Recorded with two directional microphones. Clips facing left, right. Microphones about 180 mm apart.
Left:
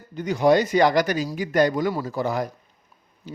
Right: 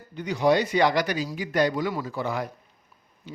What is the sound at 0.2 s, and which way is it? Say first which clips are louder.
Speech: left 3 dB; 45° left (ahead or behind).